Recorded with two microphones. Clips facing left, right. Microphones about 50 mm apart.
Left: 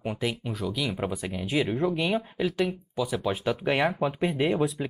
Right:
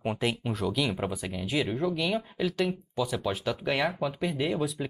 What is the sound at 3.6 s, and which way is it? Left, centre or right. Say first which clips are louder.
Speech: left 3 dB; left.